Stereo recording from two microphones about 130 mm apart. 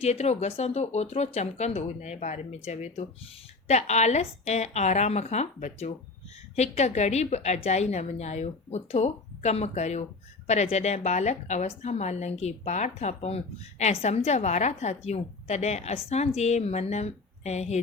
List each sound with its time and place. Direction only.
0.0 s a woman's voice: 55° left (ahead or behind)